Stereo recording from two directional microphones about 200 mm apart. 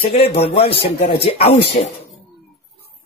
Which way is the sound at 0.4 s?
30° left (ahead or behind).